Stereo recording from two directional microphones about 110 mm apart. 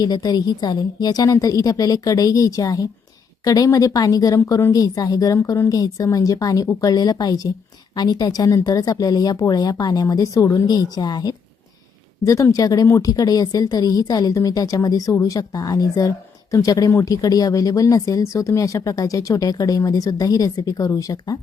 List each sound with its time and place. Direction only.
0.0 s a woman's voice: 40° left (ahead or behind)